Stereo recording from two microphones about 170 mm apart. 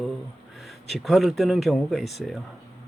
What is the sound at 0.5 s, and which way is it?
Speech, centre (ahead or behind).